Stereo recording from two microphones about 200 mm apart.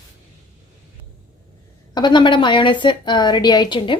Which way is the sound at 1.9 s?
20° left (ahead or behind).